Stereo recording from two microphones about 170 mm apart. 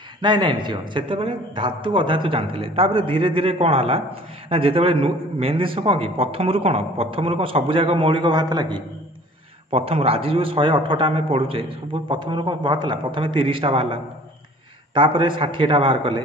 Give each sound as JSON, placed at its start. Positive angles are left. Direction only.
{"t": 0.2, "sound": "a man's voice", "side_deg": -30}
{"t": 15.0, "sound": "a man's voice", "side_deg": -30}